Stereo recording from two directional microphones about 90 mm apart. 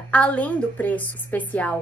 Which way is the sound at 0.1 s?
15° left (ahead or behind).